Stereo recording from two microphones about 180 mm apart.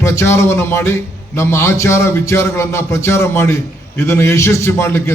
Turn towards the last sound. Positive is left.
turn(degrees=15)  # may be behind; listen again after turning